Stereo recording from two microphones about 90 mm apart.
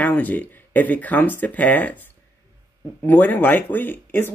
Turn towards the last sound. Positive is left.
turn(degrees=20)  # may be behind; listen again after turning